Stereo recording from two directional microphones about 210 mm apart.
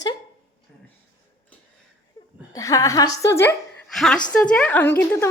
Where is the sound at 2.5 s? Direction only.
15° left (ahead or behind).